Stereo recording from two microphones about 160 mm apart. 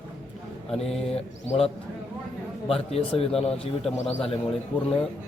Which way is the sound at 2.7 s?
40° left (ahead or behind).